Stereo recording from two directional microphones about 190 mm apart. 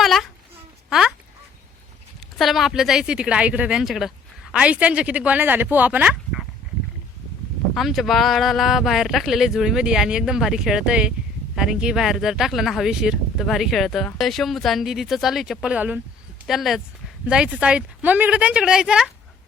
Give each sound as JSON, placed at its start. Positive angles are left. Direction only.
{"t": 0.0, "sound": "a sound", "side_deg": 0}
{"t": 0.9, "sound": "speech", "side_deg": -5}
{"t": 2.4, "sound": "speech", "side_deg": 0}
{"t": 7.7, "sound": "speech", "side_deg": 0}